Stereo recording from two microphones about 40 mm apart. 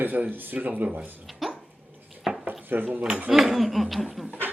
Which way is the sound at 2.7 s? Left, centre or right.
Right.